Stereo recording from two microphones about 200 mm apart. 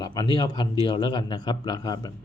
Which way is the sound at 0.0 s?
20° left (ahead or behind).